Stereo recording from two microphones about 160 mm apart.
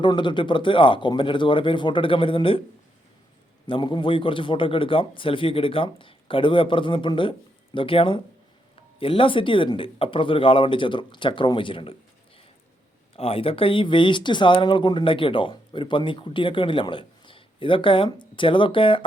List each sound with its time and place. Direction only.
0.0 s speech: 30° left (ahead or behind)
3.7 s speech: 30° left (ahead or behind)
13.1 s speech: 35° left (ahead or behind)